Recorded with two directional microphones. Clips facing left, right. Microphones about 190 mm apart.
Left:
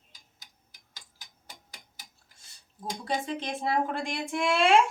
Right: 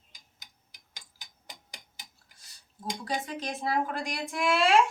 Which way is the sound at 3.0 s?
25° left (ahead or behind).